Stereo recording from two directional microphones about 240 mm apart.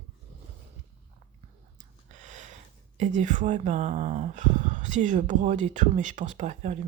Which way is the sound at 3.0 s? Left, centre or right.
Right.